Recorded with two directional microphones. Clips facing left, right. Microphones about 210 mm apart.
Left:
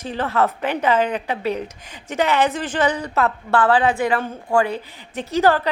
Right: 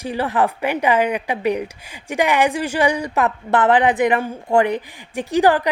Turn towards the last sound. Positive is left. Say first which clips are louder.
# right 2 dB
turn(degrees=-15)  # may be behind; listen again after turning